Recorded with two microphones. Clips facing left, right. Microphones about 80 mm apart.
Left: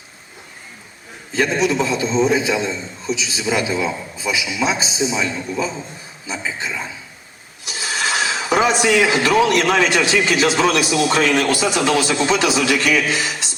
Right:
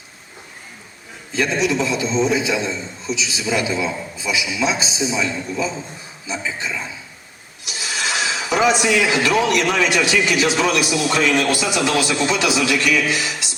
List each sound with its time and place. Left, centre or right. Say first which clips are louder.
1.5 s a man's voice: left 1 dB; left